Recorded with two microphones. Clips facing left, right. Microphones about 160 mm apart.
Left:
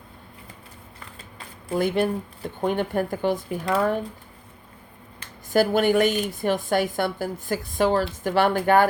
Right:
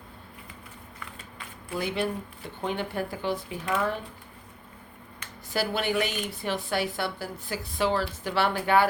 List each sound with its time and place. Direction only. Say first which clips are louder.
0.9 s shuffling cards: even; 35° left (ahead or behind)
2.6 s a woman's voice: left 6 dB; 50° left (ahead or behind)
5.5 s a woman's voice: left 9 dB; 45° left (ahead or behind)